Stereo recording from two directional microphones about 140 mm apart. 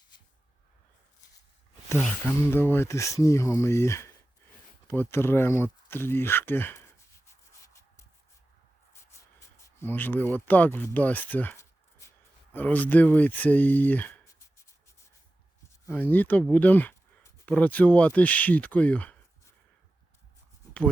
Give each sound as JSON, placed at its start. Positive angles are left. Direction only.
{"t": 2.0, "sound": "speech", "side_deg": 15}
{"t": 9.8, "sound": "speech", "side_deg": 15}
{"t": 10.9, "sound": "a sound", "side_deg": 10}
{"t": 12.5, "sound": "speech", "side_deg": 10}
{"t": 15.9, "sound": "speech", "side_deg": 10}